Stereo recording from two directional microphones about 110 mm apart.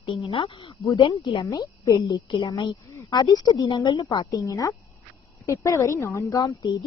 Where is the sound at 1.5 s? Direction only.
35° left (ahead or behind).